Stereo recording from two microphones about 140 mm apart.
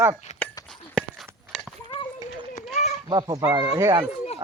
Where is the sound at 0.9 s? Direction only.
Centre (ahead or behind).